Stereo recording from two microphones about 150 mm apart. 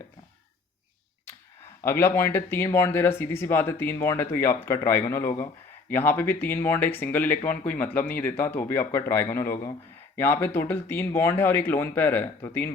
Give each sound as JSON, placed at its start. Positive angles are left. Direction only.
{"t": 1.8, "sound": "speech", "side_deg": 15}